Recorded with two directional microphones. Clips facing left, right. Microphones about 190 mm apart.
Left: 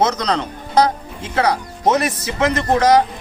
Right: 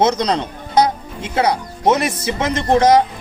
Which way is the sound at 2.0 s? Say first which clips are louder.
Left 1 dB; 25° right (ahead or behind).